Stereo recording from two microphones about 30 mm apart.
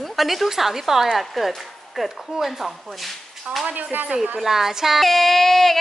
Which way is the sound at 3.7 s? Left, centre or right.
Right.